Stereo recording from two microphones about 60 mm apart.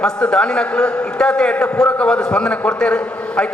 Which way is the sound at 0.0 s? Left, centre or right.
Centre.